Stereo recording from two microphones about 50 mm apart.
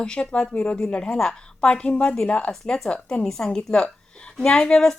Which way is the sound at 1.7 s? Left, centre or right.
Left.